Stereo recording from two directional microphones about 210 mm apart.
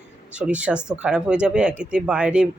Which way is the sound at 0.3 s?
5° right (ahead or behind).